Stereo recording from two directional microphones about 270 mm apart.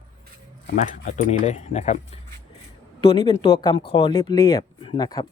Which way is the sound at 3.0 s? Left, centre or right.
Centre.